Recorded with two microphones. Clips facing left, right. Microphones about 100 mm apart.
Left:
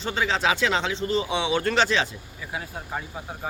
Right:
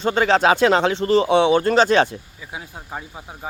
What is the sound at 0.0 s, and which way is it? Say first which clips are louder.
Speech: right 8 dB; 50° right (ahead or behind).